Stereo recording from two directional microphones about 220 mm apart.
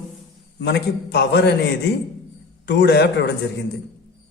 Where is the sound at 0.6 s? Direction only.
50° left (ahead or behind).